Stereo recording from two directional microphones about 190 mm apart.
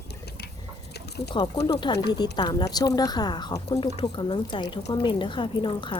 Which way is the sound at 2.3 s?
20° left (ahead or behind).